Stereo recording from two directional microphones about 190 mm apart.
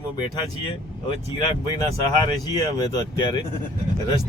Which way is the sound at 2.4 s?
20° left (ahead or behind).